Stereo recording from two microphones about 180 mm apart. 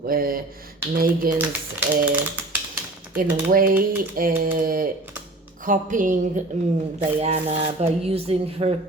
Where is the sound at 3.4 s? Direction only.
55° right (ahead or behind).